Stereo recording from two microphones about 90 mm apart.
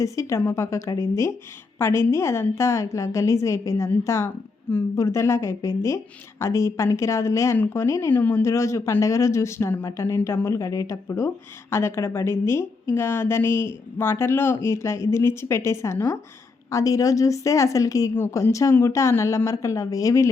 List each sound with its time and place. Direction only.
0.0 s a woman's voice: 35° left (ahead or behind)
8.1 s a woman's voice: 20° left (ahead or behind); by 18.1 s 40° left (ahead or behind)
18.1 s a woman's voice: 25° left (ahead or behind)